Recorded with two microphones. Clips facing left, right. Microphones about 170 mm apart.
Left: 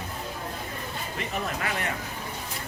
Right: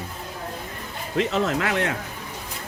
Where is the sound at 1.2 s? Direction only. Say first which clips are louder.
Right 10 dB; 90° right.